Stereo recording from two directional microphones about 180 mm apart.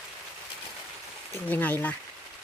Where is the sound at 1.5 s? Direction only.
10° left (ahead or behind).